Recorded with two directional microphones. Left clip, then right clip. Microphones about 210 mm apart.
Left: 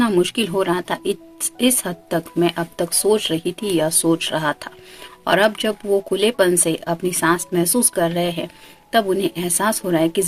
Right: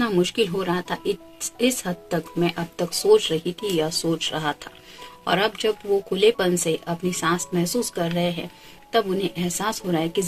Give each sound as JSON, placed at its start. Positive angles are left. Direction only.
{"t": 0.0, "sound": "speech", "side_deg": 50}